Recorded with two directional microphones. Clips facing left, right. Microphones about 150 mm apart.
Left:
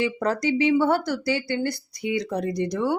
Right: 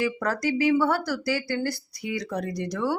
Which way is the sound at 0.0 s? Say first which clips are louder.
Left 2 dB; 20° left (ahead or behind).